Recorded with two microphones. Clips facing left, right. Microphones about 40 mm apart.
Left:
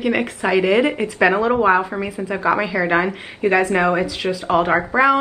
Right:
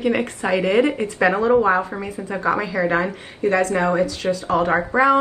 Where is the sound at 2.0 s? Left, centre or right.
Left.